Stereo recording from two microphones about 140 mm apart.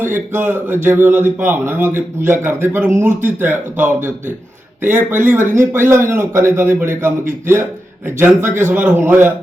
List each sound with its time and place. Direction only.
0.0 s a man's voice: 15° right (ahead or behind)
8.7 s a man's voice: 10° right (ahead or behind)